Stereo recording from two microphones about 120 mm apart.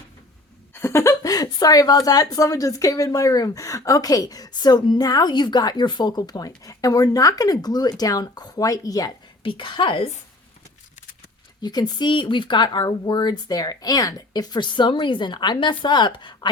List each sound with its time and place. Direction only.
0.7 s a woman's voice: 20° left (ahead or behind)
9.4 s a woman's voice: 45° left (ahead or behind)
11.6 s a woman's voice: 35° left (ahead or behind)